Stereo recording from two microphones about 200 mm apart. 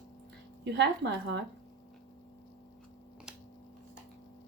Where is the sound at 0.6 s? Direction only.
60° right (ahead or behind).